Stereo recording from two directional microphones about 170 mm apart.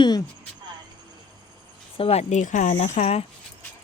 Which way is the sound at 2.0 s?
40° left (ahead or behind).